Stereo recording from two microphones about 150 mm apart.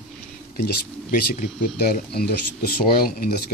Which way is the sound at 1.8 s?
90° left.